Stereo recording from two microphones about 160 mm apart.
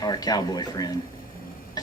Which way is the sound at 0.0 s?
25° left (ahead or behind).